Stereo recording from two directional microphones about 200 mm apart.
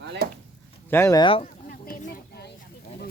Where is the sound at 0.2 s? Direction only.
50° right (ahead or behind).